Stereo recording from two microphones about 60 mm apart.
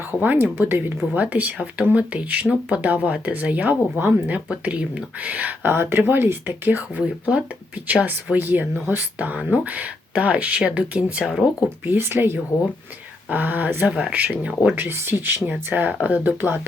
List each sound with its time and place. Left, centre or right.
0.2 s speech: right; by 11.4 s centre
11.9 s speech: right
14.8 s speech: right